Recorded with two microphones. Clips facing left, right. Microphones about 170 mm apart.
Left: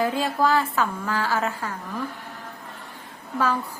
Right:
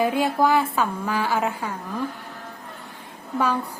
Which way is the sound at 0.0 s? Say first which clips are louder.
Right 2 dB; 15° right (ahead or behind).